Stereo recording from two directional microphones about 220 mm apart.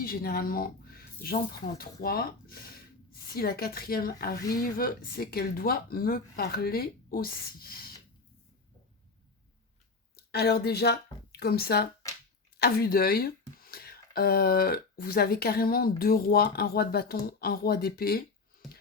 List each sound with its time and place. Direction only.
0.0 s a woman's voice: 40° left (ahead or behind)
10.2 s a woman's voice: 45° left (ahead or behind)